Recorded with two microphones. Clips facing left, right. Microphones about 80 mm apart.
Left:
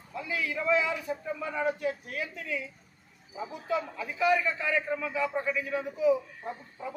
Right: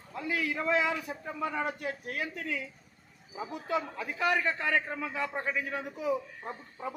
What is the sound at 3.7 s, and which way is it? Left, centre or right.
A man's voice, right.